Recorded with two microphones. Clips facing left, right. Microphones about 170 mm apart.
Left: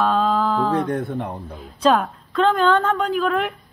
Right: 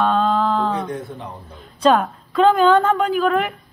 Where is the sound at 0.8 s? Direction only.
60° left (ahead or behind).